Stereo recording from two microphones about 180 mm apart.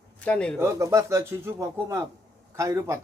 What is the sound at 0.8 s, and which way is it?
Speech, 15° right (ahead or behind).